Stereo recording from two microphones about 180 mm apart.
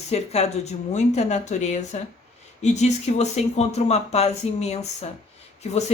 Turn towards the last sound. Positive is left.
turn(degrees=40)  # may be behind; listen again after turning